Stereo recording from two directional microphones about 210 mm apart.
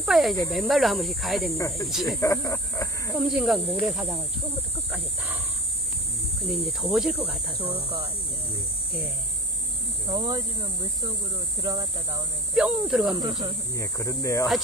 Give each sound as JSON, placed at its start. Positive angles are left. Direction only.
{"t": 0.0, "sound": "speech", "side_deg": 0}
{"t": 2.1, "sound": "speech", "side_deg": 15}
{"t": 3.2, "sound": "speech", "side_deg": 0}
{"t": 6.6, "sound": "speech", "side_deg": 0}
{"t": 10.0, "sound": "speech", "side_deg": -25}
{"t": 10.3, "sound": "speech", "side_deg": -15}
{"t": 12.5, "sound": "speech", "side_deg": -5}
{"t": 13.1, "sound": "speech", "side_deg": -20}
{"t": 13.7, "sound": "speech", "side_deg": 15}